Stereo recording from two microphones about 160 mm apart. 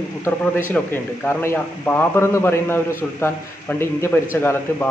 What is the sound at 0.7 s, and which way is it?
A man's voice, 10° left (ahead or behind).